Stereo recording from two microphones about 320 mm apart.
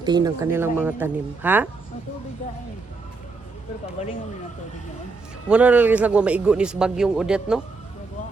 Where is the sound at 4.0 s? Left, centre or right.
Centre.